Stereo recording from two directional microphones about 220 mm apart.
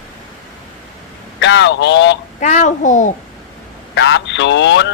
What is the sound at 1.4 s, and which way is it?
Speech, 55° left (ahead or behind).